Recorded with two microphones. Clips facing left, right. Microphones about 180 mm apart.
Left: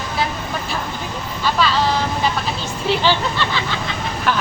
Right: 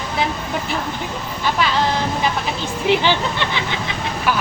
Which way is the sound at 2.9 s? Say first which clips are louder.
Right 1 dB; 15° right (ahead or behind).